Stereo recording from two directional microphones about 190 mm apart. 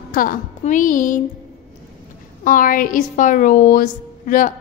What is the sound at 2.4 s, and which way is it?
A woman's voice, 45° left (ahead or behind).